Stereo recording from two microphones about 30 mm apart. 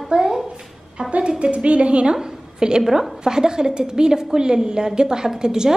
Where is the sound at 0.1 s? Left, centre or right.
Right.